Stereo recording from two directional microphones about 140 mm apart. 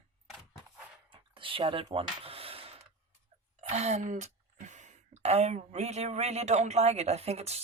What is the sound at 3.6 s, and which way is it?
Speech, 50° right (ahead or behind).